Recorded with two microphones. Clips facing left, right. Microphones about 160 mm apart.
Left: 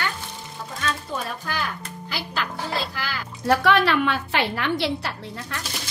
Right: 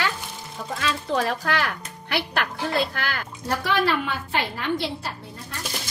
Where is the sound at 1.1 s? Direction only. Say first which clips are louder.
Right 6 dB; 85° right; by 3.3 s 55° right (ahead or behind).